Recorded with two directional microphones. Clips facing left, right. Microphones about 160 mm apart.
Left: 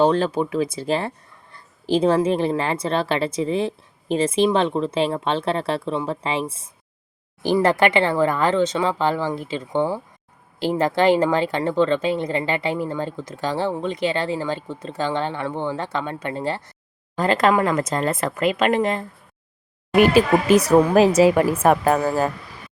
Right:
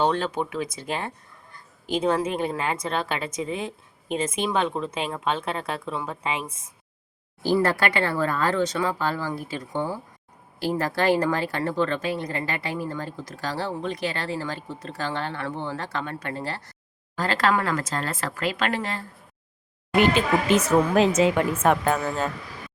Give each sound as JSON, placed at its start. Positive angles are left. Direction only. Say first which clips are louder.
{"t": 0.0, "sound": "a woman's voice", "louder": "left 6 dB", "side_deg": 30}
{"t": 7.4, "sound": "speech", "louder": "left 4 dB", "side_deg": 20}
{"t": 20.0, "sound": "speech", "louder": "left 5 dB", "side_deg": -20}
{"t": 21.5, "sound": "a woman's voice", "louder": "left 4 dB", "side_deg": 35}